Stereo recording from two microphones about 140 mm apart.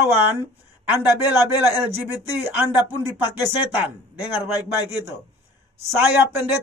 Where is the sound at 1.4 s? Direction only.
15° right (ahead or behind).